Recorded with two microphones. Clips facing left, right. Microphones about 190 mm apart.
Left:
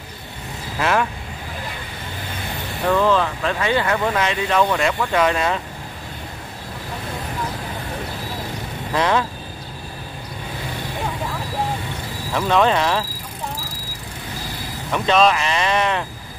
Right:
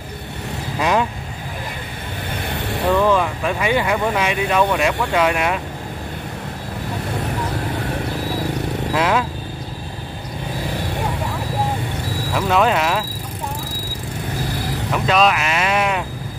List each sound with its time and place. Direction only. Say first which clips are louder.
0.7 s speech: right 1 dB; 15° right (ahead or behind)
2.9 s speech: right 1 dB; 15° right (ahead or behind)
8.9 s speech: even; 10° right (ahead or behind)
12.4 s speech: even; 5° right (ahead or behind)
14.9 s speech: left 1 dB; 5° right (ahead or behind)